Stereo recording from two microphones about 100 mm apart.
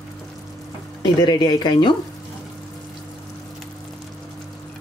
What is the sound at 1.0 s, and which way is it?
Speech, 50° left (ahead or behind).